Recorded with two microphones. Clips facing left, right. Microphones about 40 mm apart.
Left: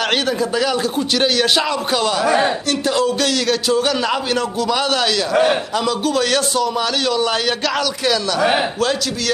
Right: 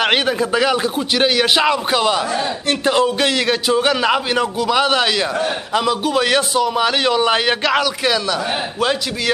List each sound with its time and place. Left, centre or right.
0.0 s a man's voice: right
5.3 s a man's voice: left
5.7 s a man's voice: centre